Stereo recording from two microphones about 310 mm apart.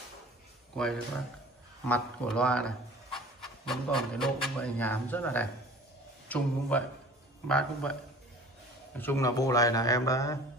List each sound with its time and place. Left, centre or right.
0.7 s a man's voice: centre
8.9 s a man's voice: centre